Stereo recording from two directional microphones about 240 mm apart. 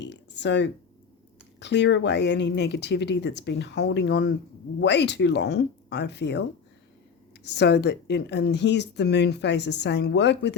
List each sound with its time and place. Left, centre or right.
0.0 s a sound: left
1.5 s speech: left
7.4 s speech: left